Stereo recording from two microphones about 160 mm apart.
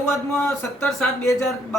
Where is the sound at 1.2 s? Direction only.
15° left (ahead or behind).